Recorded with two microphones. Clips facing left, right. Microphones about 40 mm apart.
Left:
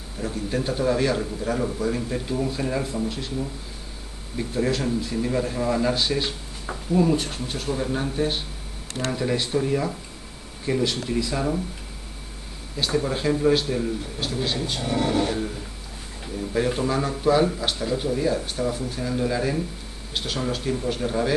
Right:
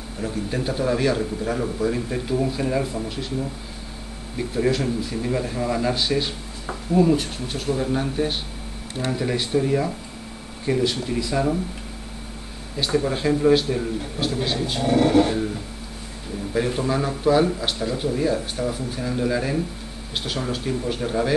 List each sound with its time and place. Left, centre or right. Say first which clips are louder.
0.2 s a man's voice: right 1 dB; centre
12.7 s a man's voice: right 2 dB; centre
14.9 s a sound: right 6 dB; centre
16.5 s speech: right 1 dB; centre